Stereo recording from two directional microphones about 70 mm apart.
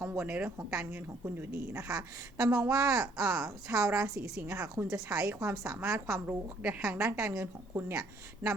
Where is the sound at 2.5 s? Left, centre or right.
Right.